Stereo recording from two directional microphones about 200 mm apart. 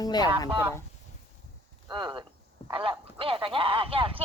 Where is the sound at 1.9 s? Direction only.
20° right (ahead or behind).